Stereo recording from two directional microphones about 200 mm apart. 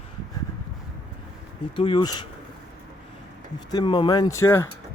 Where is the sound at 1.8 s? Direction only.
25° left (ahead or behind).